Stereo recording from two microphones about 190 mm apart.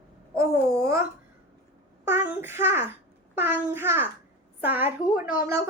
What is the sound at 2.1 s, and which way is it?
A woman's voice, 10° right (ahead or behind).